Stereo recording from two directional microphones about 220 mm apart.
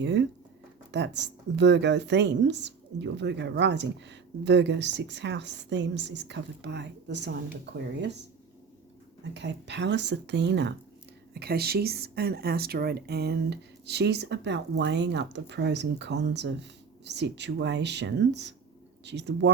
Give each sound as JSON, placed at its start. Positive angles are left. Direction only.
{"t": 0.0, "sound": "a woman's voice", "side_deg": -55}
{"t": 9.3, "sound": "a woman's voice", "side_deg": -50}